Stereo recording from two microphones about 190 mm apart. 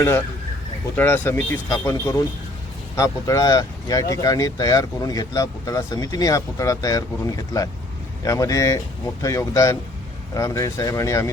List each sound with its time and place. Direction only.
0.9 s speech: 10° left (ahead or behind)